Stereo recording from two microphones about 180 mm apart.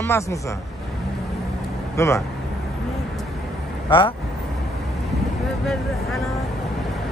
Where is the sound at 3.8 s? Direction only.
30° left (ahead or behind).